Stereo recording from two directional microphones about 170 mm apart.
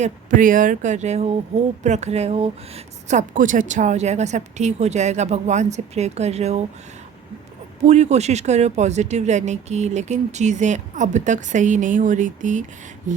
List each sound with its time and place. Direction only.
0.0 s speech: 50° right (ahead or behind)
7.8 s speech: 40° right (ahead or behind)